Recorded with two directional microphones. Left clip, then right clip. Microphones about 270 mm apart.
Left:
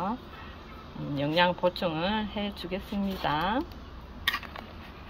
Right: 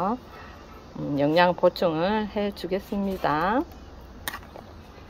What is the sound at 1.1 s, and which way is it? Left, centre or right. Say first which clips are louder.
Speech: right 5 dB; centre.